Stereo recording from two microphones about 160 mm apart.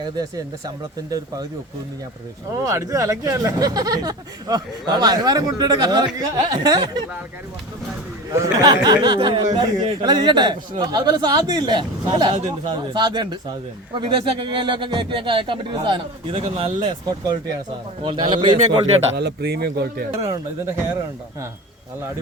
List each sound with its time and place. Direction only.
0.0 s speech: 25° right (ahead or behind)
2.6 s speech: 20° right (ahead or behind)
8.4 s speech: 25° right (ahead or behind)
18.0 s a man's voice: 30° right (ahead or behind)
19.1 s speech: 90° right
20.1 s speech: 20° right (ahead or behind)